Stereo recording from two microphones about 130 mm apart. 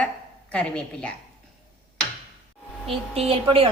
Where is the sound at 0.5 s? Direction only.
10° left (ahead or behind).